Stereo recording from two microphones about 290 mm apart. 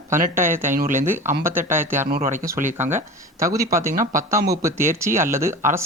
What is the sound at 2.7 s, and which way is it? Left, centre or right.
Speech, centre.